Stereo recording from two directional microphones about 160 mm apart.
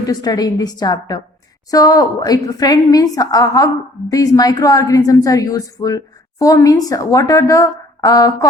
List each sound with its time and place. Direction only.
0.0 s speech: 25° left (ahead or behind)